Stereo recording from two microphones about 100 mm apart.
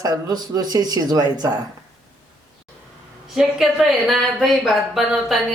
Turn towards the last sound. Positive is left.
turn(degrees=0)  # may be behind; listen again after turning